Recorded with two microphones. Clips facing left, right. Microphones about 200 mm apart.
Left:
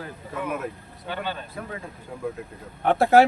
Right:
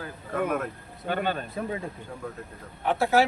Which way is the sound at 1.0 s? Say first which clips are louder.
Right 3 dB; 50° right (ahead or behind).